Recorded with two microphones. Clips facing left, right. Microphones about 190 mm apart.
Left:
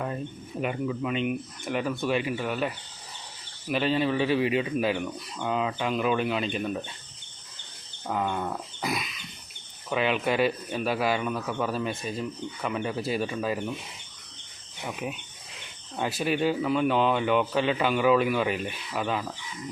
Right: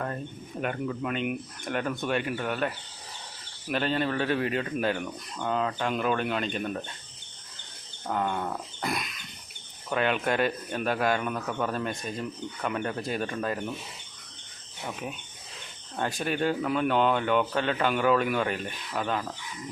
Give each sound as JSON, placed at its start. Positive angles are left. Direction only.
{"t": 0.6, "sound": "speech", "side_deg": 5}
{"t": 8.0, "sound": "speech", "side_deg": 5}
{"t": 14.8, "sound": "speech", "side_deg": 10}